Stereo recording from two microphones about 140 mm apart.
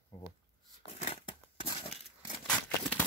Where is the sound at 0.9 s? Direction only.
50° left (ahead or behind).